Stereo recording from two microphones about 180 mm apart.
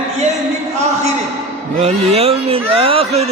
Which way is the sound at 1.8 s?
35° right (ahead or behind).